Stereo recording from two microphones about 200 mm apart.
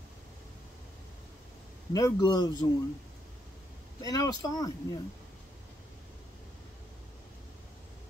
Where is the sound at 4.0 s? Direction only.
15° left (ahead or behind).